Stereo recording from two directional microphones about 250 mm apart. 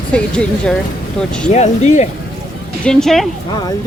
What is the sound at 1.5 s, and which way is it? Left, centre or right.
Speech, left.